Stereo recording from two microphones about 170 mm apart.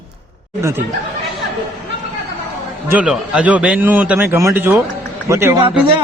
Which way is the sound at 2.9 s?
5° right (ahead or behind).